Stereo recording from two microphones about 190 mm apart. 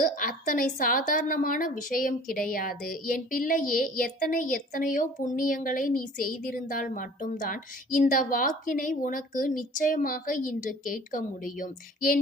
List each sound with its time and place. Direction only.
0.0 s a woman's voice: 45° left (ahead or behind)